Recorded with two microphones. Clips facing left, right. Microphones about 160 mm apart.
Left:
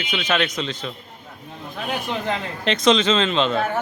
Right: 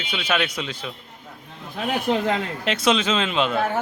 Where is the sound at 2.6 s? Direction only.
5° right (ahead or behind).